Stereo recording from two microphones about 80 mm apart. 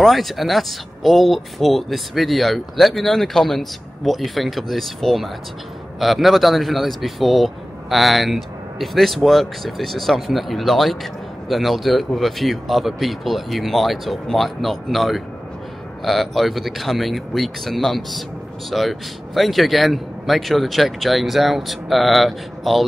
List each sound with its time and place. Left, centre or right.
0.0 s speech: centre